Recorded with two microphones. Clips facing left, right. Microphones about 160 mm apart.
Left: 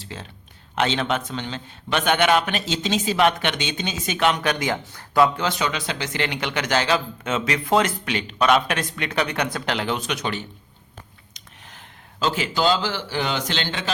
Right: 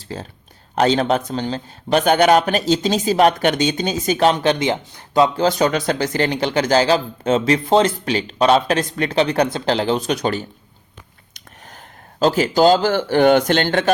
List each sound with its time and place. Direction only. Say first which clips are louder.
0.0 s speech: right 6 dB; 40° right (ahead or behind); by 5.3 s 25° right (ahead or behind)
5.4 s speech: right 8 dB; 40° right (ahead or behind)
12.2 s speech: right 8 dB; 40° right (ahead or behind)